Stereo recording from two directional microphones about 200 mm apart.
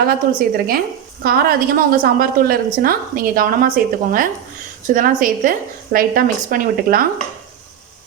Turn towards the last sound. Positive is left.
turn(degrees=-45)  # may be behind; listen again after turning